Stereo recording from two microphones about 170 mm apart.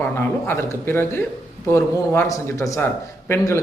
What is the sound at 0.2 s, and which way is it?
Speech, 15° left (ahead or behind).